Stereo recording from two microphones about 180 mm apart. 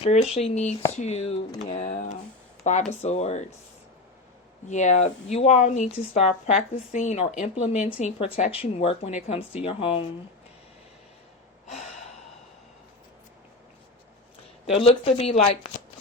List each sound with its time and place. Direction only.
0.0 s speech: 35° left (ahead or behind)
4.7 s speech: 40° left (ahead or behind)
11.6 s gasp: 40° left (ahead or behind)
14.8 s speech: 35° left (ahead or behind)